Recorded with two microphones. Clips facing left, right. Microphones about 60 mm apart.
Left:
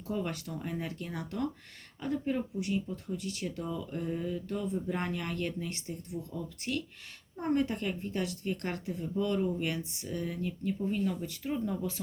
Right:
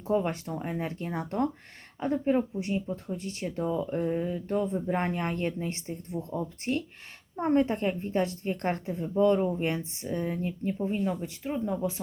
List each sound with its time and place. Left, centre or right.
0.1 s speech: right